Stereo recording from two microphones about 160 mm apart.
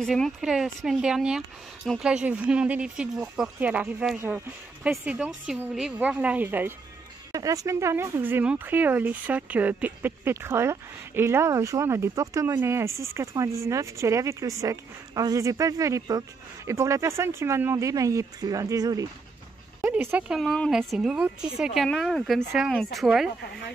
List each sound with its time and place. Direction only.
0.0 s a woman's voice: centre (ahead or behind)